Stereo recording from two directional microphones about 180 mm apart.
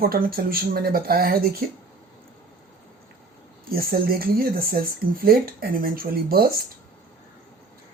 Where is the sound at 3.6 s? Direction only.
55° right (ahead or behind).